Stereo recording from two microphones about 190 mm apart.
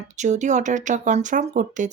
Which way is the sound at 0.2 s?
40° right (ahead or behind).